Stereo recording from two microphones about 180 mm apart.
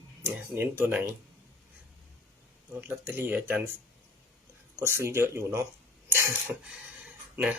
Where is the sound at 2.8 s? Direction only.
10° right (ahead or behind).